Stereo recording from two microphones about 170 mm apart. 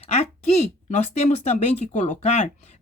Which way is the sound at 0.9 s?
40° left (ahead or behind).